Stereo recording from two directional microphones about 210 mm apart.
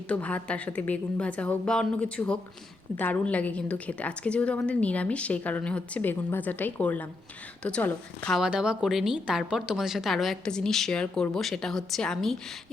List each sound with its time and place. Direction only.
0.1 s a woman's voice: 5° left (ahead or behind)